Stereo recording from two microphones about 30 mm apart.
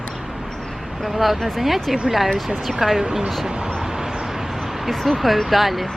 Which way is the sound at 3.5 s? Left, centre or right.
Right.